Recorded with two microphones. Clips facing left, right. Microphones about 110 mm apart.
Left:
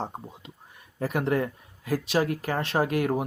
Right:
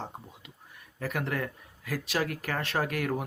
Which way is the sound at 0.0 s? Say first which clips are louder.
Left 6 dB; 30° left (ahead or behind).